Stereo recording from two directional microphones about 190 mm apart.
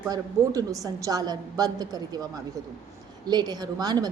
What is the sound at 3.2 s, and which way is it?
Speech, 20° right (ahead or behind).